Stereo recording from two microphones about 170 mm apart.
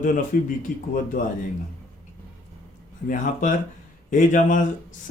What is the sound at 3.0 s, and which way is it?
Speech, 50° left (ahead or behind).